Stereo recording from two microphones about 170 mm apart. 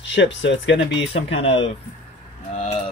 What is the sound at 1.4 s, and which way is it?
Speech, 35° left (ahead or behind).